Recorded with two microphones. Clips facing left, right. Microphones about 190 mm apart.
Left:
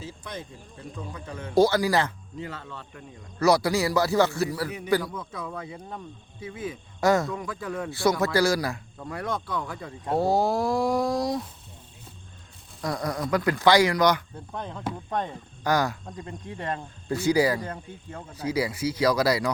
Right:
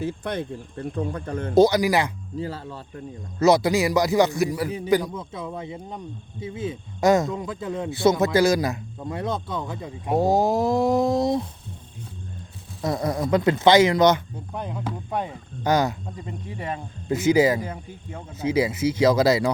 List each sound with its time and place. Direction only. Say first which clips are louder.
0.0 s speech: right 10 dB; 60° right (ahead or behind)
1.5 s speech: right 3 dB; 20° right (ahead or behind)
2.4 s speech: right 5 dB; 35° right (ahead or behind)
3.3 s speech: right 3 dB; 20° right (ahead or behind)
12.8 s speech: right 4 dB; 25° right (ahead or behind)
14.3 s speech: right 3 dB; 10° right (ahead or behind)
15.6 s speech: right 3 dB; 20° right (ahead or behind)
16.0 s speech: right 2 dB; 5° right (ahead or behind)
17.1 s speech: right 4 dB; 20° right (ahead or behind)
17.6 s speech: right 2 dB; 10° right (ahead or behind)
18.3 s speech: right 5 dB; 25° right (ahead or behind)